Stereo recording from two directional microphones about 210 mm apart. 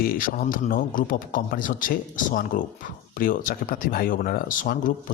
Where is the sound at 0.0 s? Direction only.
45° left (ahead or behind).